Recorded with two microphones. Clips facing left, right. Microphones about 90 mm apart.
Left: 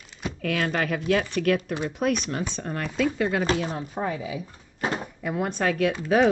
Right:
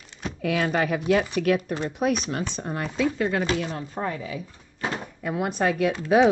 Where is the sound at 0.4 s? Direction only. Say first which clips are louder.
Right 2 dB; 10° right (ahead or behind).